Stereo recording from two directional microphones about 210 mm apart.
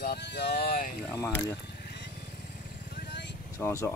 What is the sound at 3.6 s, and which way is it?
Speech, 15° left (ahead or behind).